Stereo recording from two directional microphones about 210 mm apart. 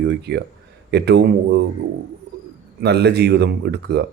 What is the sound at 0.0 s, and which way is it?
Speech, 55° right (ahead or behind).